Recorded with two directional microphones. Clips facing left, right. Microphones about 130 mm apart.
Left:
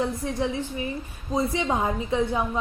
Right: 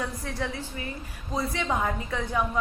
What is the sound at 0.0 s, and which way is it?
A woman's voice, 20° left (ahead or behind).